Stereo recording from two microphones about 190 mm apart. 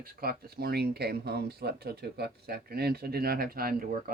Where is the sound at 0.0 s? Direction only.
50° right (ahead or behind).